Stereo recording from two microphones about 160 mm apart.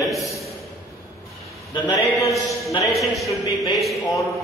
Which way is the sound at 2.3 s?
Centre (ahead or behind).